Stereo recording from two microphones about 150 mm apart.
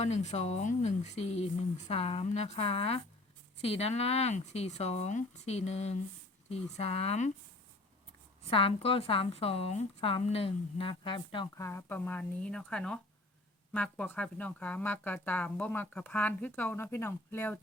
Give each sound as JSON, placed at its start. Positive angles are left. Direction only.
{"t": 0.0, "sound": "speech", "side_deg": 50}
{"t": 8.4, "sound": "speech", "side_deg": 40}
{"t": 11.5, "sound": "speech", "side_deg": 20}